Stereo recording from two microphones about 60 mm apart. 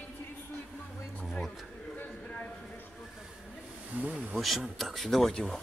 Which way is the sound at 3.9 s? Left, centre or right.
Right.